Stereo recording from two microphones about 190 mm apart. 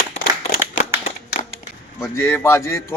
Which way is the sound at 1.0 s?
35° left (ahead or behind).